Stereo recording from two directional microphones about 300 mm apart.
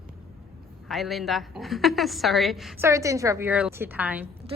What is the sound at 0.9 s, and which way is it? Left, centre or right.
A woman's voice, centre.